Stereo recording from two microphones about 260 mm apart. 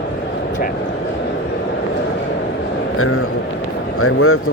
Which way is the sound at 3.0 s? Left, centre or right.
Left.